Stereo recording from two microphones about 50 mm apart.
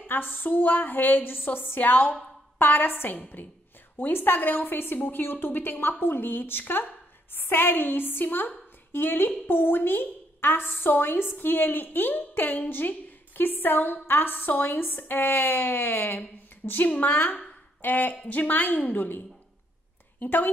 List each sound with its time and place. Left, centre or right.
0.0 s a woman's voice: left